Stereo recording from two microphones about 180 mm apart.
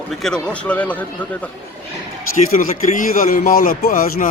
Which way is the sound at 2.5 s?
50° left (ahead or behind).